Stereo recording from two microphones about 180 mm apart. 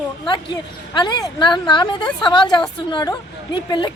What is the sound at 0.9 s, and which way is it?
Speech, 25° left (ahead or behind).